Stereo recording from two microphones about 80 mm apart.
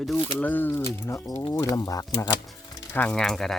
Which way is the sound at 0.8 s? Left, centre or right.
Left.